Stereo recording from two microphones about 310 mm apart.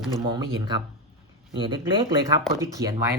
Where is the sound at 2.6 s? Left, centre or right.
Centre.